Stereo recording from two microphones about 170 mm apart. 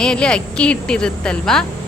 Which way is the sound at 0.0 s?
5° left (ahead or behind).